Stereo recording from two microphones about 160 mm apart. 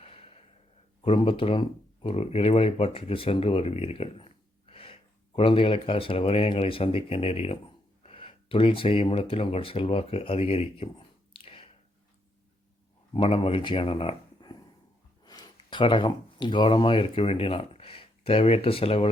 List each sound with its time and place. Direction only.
0.0 s gasp: 35° left (ahead or behind)
1.0 s speech: 35° left (ahead or behind)
13.1 s speech: 35° left (ahead or behind)